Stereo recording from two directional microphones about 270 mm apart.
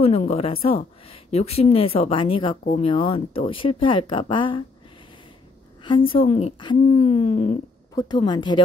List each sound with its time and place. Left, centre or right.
0.0 s a woman's voice: left
5.8 s a woman's voice: centre
7.9 s a woman's voice: centre